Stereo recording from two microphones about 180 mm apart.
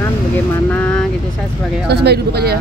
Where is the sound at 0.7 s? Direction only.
10° left (ahead or behind).